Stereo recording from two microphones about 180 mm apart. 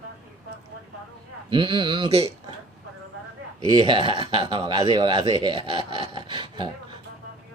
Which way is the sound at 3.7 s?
25° right (ahead or behind).